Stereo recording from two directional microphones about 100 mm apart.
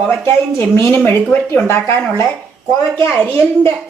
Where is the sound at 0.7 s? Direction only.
25° left (ahead or behind).